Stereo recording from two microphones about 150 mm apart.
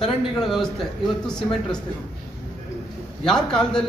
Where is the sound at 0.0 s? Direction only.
5° left (ahead or behind).